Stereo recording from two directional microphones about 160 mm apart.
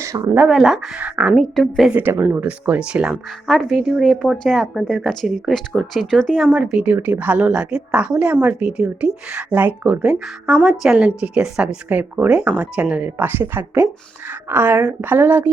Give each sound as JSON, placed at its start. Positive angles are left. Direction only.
{"t": 0.0, "sound": "speech", "side_deg": -20}
{"t": 0.4, "sound": "speech", "side_deg": -5}
{"t": 1.5, "sound": "a woman's voice", "side_deg": 0}
{"t": 2.0, "sound": "speech", "side_deg": -10}